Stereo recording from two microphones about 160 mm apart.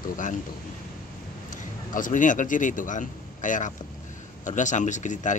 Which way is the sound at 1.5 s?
55° left (ahead or behind).